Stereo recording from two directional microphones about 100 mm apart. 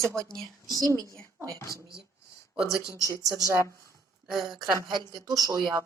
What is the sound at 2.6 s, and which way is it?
Speech, 35° left (ahead or behind).